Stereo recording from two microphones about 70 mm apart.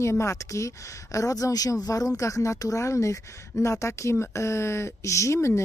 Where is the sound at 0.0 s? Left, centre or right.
Left.